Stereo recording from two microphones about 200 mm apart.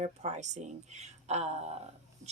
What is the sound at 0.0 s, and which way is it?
Speech, 35° right (ahead or behind).